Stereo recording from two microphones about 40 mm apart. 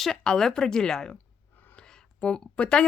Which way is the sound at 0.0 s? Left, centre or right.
Centre.